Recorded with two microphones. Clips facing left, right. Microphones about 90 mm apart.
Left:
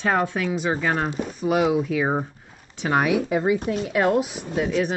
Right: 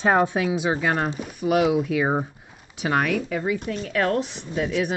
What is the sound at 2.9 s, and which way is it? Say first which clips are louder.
Speech: left 3 dB; 10° left (ahead or behind).